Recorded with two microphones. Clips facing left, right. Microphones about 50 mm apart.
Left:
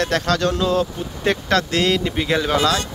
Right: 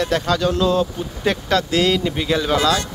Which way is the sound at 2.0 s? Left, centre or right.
Centre.